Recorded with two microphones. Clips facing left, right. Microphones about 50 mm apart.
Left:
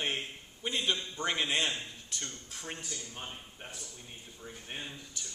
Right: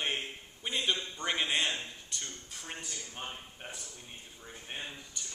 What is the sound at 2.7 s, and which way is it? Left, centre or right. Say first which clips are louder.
Speech: even; centre.